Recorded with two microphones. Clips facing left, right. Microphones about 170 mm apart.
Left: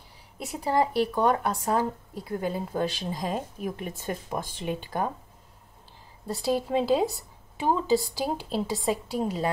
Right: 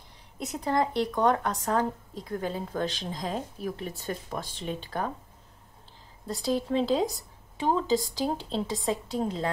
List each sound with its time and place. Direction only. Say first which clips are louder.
0.4 s speech: left 2 dB; 10° left (ahead or behind)
6.8 s speech: left 2 dB; 10° left (ahead or behind)